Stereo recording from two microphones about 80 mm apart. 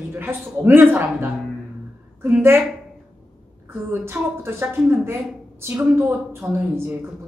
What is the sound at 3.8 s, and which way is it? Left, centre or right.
A woman's voice, right.